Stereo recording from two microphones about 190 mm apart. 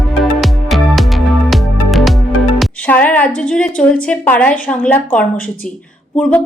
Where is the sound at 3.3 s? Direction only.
5° left (ahead or behind).